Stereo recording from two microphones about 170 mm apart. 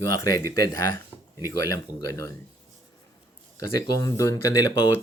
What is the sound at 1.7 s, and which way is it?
Speech, 20° left (ahead or behind).